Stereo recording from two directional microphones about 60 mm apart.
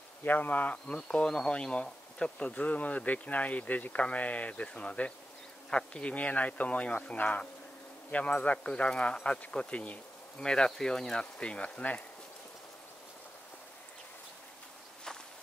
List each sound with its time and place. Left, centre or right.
0.2 s speech: left